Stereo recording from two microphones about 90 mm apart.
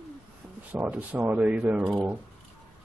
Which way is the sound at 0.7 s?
15° right (ahead or behind).